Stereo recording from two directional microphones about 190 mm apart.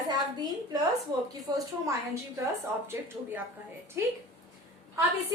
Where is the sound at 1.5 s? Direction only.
20° right (ahead or behind).